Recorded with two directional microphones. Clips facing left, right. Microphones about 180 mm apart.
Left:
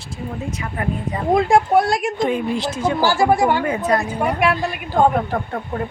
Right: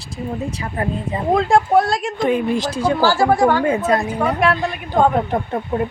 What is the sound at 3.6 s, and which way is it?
Speech, 25° right (ahead or behind).